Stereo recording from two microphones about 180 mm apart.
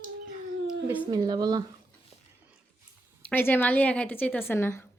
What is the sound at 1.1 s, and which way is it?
Speech, 20° right (ahead or behind).